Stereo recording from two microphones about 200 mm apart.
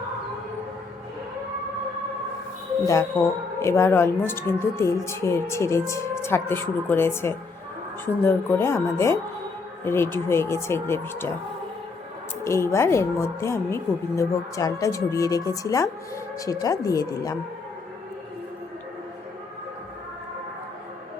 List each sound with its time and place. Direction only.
3.2 s a woman's voice: 10° left (ahead or behind)
12.5 s a woman's voice: 15° left (ahead or behind)